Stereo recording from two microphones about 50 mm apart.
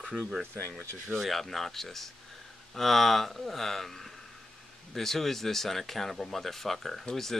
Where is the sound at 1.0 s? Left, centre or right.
Centre.